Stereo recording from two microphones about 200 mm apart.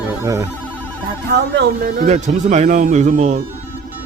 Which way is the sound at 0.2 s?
15° right (ahead or behind).